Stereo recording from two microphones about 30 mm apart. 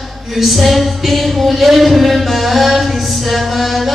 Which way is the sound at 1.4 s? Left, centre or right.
Centre.